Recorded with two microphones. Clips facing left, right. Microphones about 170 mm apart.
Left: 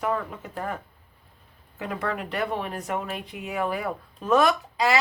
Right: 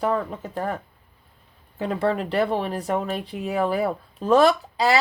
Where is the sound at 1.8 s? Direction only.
30° right (ahead or behind).